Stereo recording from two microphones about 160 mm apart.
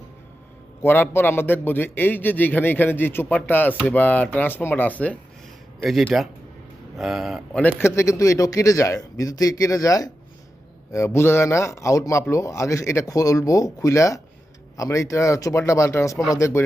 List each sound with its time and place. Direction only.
0.8 s a man's voice: 15° left (ahead or behind)
7.8 s a man's voice: 15° left (ahead or behind)